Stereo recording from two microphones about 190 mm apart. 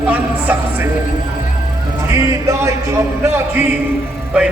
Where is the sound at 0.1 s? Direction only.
10° right (ahead or behind).